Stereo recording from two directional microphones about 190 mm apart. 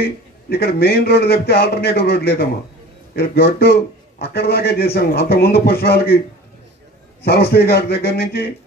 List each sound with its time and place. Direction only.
0.5 s a man's voice: 55° left (ahead or behind)
7.2 s a man's voice: 55° left (ahead or behind)